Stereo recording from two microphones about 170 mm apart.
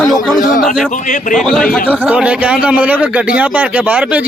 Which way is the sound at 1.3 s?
Centre (ahead or behind).